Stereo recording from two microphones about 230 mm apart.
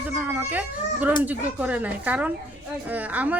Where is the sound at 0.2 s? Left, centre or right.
Centre.